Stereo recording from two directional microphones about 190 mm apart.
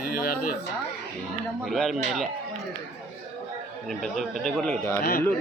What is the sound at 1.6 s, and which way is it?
Speech, centre (ahead or behind).